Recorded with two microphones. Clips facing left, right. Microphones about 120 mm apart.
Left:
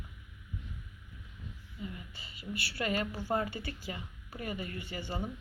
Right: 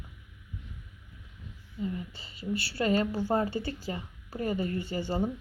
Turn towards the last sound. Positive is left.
turn(degrees=-30)  # may be behind; listen again after turning